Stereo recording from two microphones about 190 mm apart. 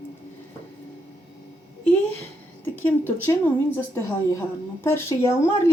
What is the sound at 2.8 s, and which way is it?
Speech, 10° left (ahead or behind).